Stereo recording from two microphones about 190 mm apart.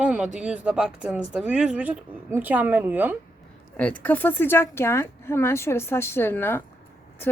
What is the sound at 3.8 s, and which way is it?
Speech, 5° left (ahead or behind).